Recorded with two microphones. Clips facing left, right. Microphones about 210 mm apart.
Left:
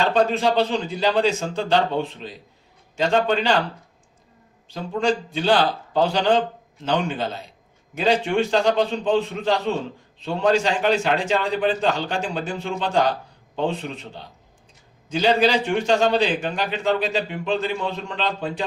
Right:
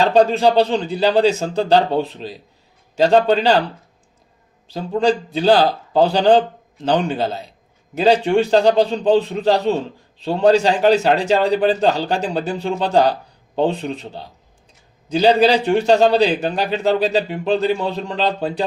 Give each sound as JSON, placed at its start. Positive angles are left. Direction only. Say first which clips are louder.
{"t": 0.0, "sound": "a man's voice", "louder": "right 6 dB", "side_deg": -35}
{"t": 4.7, "sound": "a man's voice", "louder": "right 5 dB", "side_deg": -35}